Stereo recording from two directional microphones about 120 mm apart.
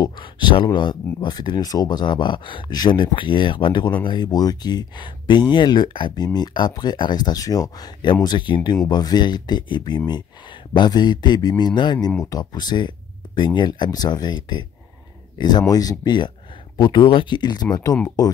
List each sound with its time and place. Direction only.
0.0 s speech: 40° left (ahead or behind)